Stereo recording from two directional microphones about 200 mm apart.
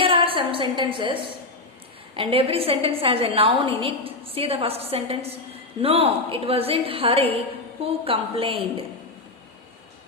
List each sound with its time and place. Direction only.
0.0 s a woman's voice: 25° right (ahead or behind)